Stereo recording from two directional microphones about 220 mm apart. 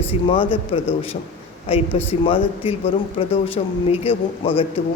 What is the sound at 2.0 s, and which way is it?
A woman's voice, 25° left (ahead or behind).